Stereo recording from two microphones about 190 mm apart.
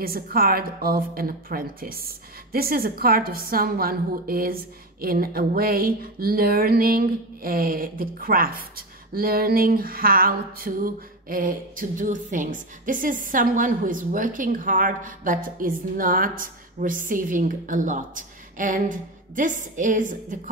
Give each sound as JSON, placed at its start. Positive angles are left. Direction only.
{"t": 0.0, "sound": "a woman's voice", "side_deg": -50}